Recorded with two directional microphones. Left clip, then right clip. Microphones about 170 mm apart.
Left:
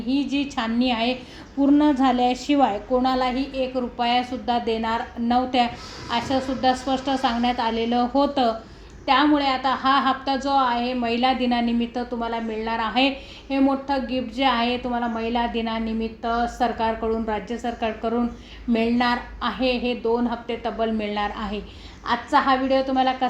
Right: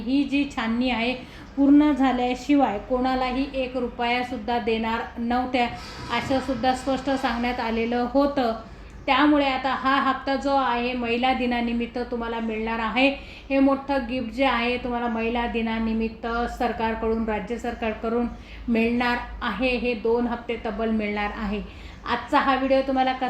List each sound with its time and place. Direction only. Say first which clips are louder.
0.1 s a woman's voice: even; 35° left (ahead or behind)